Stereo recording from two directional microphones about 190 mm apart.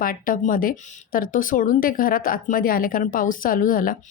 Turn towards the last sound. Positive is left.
turn(degrees=45)  # may be behind; listen again after turning